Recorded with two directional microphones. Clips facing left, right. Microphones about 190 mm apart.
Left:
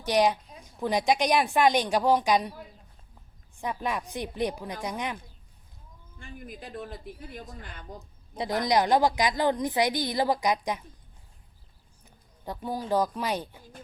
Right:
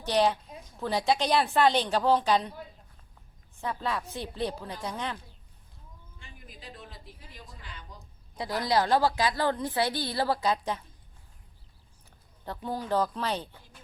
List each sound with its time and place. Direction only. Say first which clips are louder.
0.0 s a woman's voice: left 2 dB; 15° left (ahead or behind)
3.6 s a woman's voice: left 1 dB; 15° left (ahead or behind)
6.1 s speech: left 10 dB; 50° left (ahead or behind)
8.4 s a woman's voice: left 2 dB; 20° left (ahead or behind)
12.5 s a woman's voice: left 2 dB; 10° left (ahead or behind)